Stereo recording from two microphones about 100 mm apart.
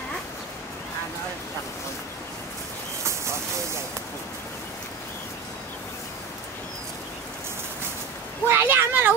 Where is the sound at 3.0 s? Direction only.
30° right (ahead or behind).